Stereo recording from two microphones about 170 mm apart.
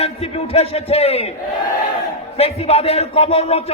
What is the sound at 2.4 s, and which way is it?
Music, 35° left (ahead or behind).